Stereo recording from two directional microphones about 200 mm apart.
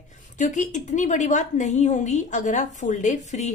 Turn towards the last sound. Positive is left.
turn(degrees=35)  # may be behind; listen again after turning